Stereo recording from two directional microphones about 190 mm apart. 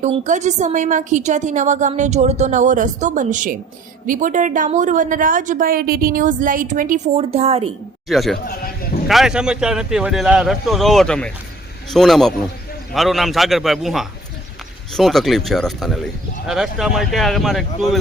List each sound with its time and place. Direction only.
0.0 s a woman's voice: 40° right (ahead or behind)
8.0 s speech: centre (ahead or behind)
8.4 s sheep: 50° left (ahead or behind)
9.0 s speech: centre (ahead or behind)